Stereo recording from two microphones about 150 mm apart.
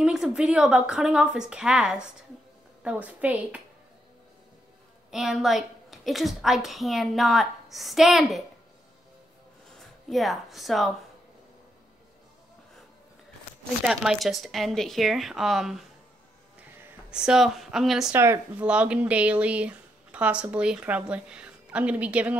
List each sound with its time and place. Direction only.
0.0 s a woman's voice: 5° right (ahead or behind)
5.1 s a woman's voice: 5° right (ahead or behind)
9.8 s speech: centre (ahead or behind)
13.8 s a woman's voice: 5° right (ahead or behind)
16.8 s speech: 5° right (ahead or behind)
18.1 s speech: 15° right (ahead or behind)